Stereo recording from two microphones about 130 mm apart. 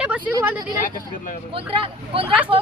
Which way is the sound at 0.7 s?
90° left.